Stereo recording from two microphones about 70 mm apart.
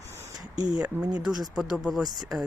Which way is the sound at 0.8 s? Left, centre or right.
Centre.